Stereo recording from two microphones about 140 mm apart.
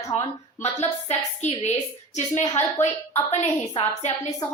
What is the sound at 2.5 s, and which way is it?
A woman's voice, 55° left (ahead or behind).